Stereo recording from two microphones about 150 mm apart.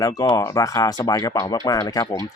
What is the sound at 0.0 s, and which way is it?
Speech, 25° left (ahead or behind).